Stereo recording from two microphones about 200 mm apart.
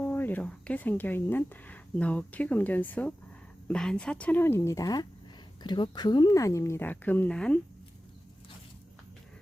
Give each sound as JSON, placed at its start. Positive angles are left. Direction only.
{"t": 0.0, "sound": "speech", "side_deg": 10}